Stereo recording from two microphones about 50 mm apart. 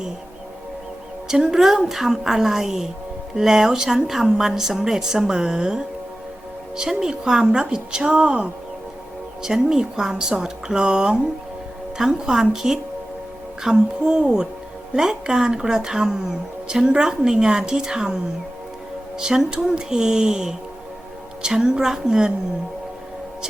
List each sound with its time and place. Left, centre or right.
1.3 s a woman's voice: centre
9.4 s a woman's voice: centre
19.2 s a woman's voice: centre